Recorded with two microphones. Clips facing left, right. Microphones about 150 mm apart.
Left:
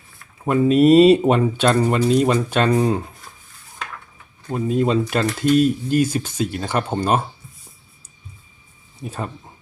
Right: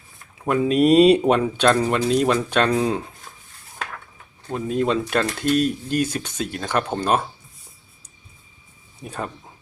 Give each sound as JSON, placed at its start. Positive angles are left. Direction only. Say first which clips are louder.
{"t": 0.4, "sound": "speech", "louder": "left 3 dB", "side_deg": 0}
{"t": 4.4, "sound": "speech", "louder": "left 2 dB", "side_deg": 5}
{"t": 9.0, "sound": "speech", "louder": "left 1 dB", "side_deg": 0}